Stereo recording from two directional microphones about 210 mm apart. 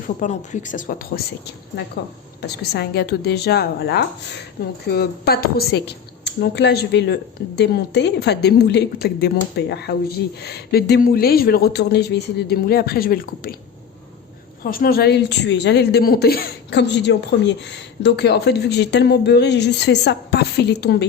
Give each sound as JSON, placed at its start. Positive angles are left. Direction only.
{"t": 0.2, "sound": "speech", "side_deg": 35}
{"t": 2.4, "sound": "a woman's voice", "side_deg": 50}
{"t": 14.6, "sound": "a woman's voice", "side_deg": 45}